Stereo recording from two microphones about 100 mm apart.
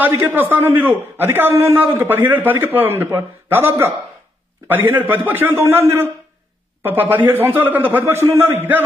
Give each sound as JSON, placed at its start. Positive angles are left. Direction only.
{"t": 0.1, "sound": "a man's voice", "side_deg": -25}